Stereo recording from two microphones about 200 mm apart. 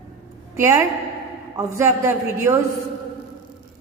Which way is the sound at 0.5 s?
15° right (ahead or behind).